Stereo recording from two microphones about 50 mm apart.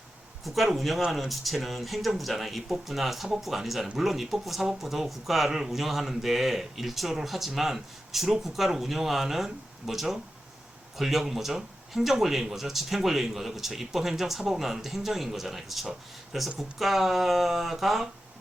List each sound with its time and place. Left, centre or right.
0.4 s speech: centre